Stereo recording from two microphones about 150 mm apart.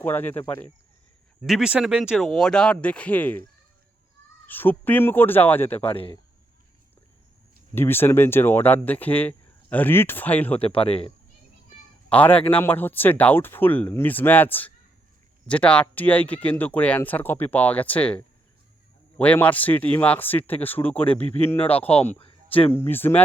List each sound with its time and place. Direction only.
0.0 s speech: 10° left (ahead or behind)
1.5 s speech: 5° right (ahead or behind); by 3.4 s 10° left (ahead or behind)
4.4 s speech: 10° left (ahead or behind)
5.9 s speech: 40° left (ahead or behind)
7.8 s speech: 15° left (ahead or behind)
10.6 s speech: 40° left (ahead or behind)
12.0 s speech: 10° left (ahead or behind)
21.2 s speech: 40° left (ahead or behind)
22.7 s speech: 15° left (ahead or behind)